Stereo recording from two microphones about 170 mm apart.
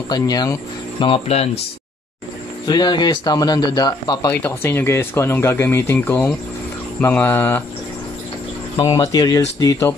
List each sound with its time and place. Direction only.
0.1 s speech: 25° left (ahead or behind); by 1.6 s 40° left (ahead or behind)
2.6 s speech: 25° left (ahead or behind)
8.7 s speech: 20° left (ahead or behind)